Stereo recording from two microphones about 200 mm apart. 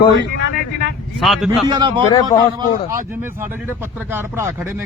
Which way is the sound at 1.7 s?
25° right (ahead or behind).